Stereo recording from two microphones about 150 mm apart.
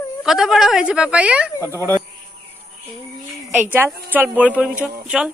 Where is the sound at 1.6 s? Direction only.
20° right (ahead or behind).